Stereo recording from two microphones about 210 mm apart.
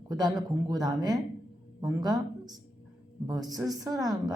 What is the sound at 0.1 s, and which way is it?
Speech, 20° right (ahead or behind).